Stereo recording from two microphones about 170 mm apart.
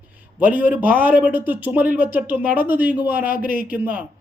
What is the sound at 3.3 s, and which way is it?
Speech, 55° left (ahead or behind).